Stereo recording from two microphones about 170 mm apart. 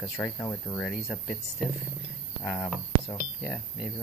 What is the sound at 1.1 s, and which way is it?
Speech, 5° left (ahead or behind).